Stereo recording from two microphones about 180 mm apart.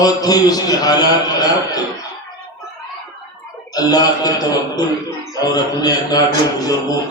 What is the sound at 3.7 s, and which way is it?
A man's voice, 20° left (ahead or behind).